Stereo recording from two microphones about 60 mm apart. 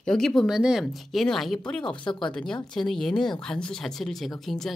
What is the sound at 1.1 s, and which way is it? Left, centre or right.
Speech, centre.